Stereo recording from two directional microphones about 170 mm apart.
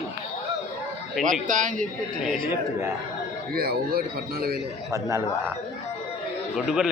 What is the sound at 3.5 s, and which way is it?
Speech, 65° right (ahead or behind).